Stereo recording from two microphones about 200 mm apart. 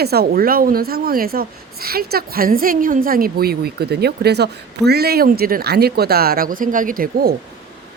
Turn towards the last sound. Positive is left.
turn(degrees=-45)  # may be behind; listen again after turning